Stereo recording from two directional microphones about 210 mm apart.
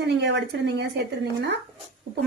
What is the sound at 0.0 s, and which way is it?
Speech, 55° right (ahead or behind).